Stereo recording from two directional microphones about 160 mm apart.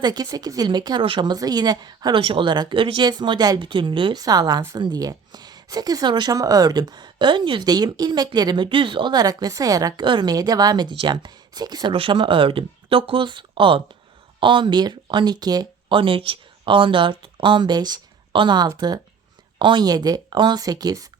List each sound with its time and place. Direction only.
0.0 s speech: 25° right (ahead or behind)